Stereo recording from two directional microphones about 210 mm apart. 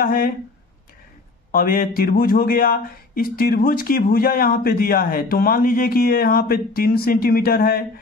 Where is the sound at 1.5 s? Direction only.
40° left (ahead or behind).